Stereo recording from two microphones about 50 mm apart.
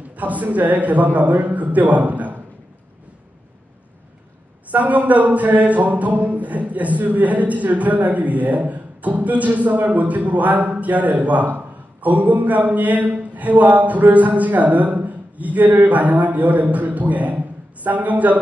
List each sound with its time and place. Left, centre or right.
0.1 s speech: right
4.6 s a man's voice: right